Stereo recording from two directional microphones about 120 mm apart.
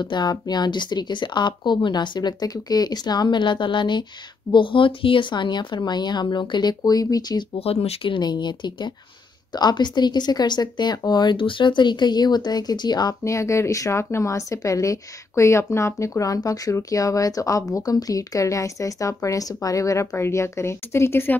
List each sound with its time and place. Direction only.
0.0 s a woman's voice: 35° left (ahead or behind)
7.5 s speech: 55° left (ahead or behind); by 21.4 s 20° left (ahead or behind)